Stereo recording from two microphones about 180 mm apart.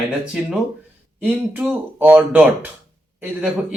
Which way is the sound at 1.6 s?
10° right (ahead or behind).